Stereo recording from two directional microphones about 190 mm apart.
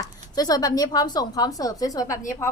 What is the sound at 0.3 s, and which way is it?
A woman's voice, 20° left (ahead or behind).